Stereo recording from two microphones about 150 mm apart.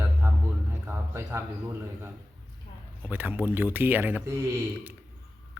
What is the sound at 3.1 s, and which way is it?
A man's voice, 10° right (ahead or behind).